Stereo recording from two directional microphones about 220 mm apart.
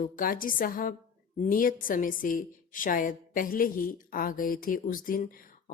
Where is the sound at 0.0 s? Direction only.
40° left (ahead or behind).